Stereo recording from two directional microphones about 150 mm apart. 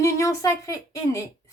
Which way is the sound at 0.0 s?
20° left (ahead or behind).